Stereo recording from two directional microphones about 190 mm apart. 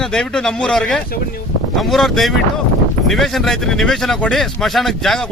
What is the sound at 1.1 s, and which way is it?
Speech, 50° left (ahead or behind).